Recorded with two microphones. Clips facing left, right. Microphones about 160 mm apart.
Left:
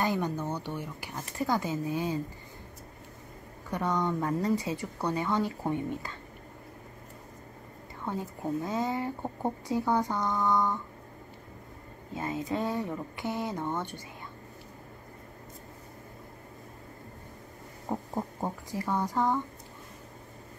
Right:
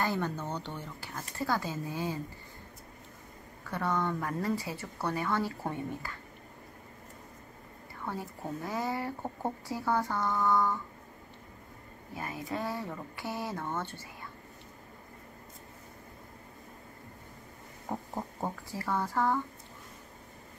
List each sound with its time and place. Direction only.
0.0 s speech: 15° left (ahead or behind)
3.7 s speech: 15° left (ahead or behind)
8.0 s speech: 20° left (ahead or behind)
12.1 s speech: 20° left (ahead or behind)
17.8 s speech: 10° left (ahead or behind)